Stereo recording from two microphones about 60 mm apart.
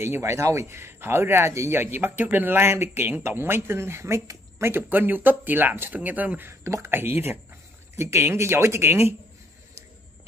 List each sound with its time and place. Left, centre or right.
0.0 s speech: right
4.6 s speech: right
6.6 s speech: right